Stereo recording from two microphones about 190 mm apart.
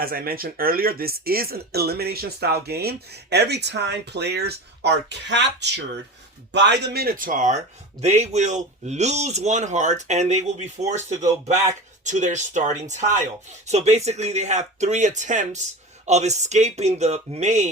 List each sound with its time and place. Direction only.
0.0 s speech: 50° right (ahead or behind)